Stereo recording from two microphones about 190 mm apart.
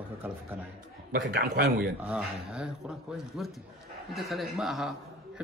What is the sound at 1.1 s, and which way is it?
Speech, 55° right (ahead or behind).